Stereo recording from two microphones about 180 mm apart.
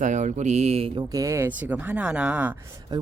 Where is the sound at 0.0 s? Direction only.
40° right (ahead or behind).